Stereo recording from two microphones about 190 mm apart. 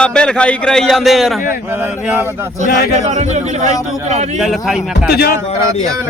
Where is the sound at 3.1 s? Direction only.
35° right (ahead or behind).